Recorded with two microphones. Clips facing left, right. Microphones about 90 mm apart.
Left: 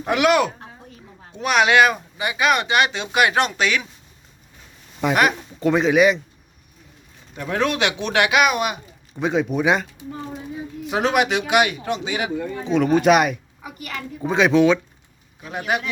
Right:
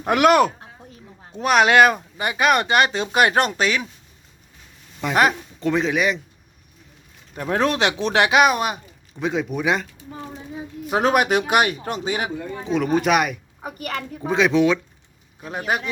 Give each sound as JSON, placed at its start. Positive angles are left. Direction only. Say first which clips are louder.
{"t": 0.1, "sound": "speech", "louder": "right 2 dB", "side_deg": -45}
{"t": 5.5, "sound": "speech", "louder": "left 8 dB", "side_deg": 5}
{"t": 7.3, "sound": "speech", "louder": "right 1 dB", "side_deg": -35}
{"t": 9.2, "sound": "speech", "louder": "left 3 dB", "side_deg": 0}
{"t": 10.8, "sound": "speech", "louder": "right 1 dB", "side_deg": -45}
{"t": 12.6, "sound": "speech", "louder": "left 4 dB", "side_deg": -5}
{"t": 13.6, "sound": "a child's voice", "louder": "right 4 dB", "side_deg": -45}
{"t": 14.3, "sound": "speech", "louder": "left 2 dB", "side_deg": 0}
{"t": 15.4, "sound": "speech", "louder": "even", "side_deg": -35}